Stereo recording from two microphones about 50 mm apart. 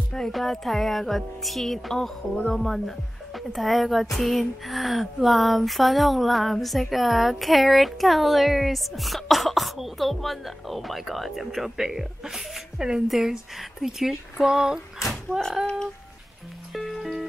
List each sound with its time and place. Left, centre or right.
0.3 s speech: centre
14.4 s a sound: centre
16.7 s music: centre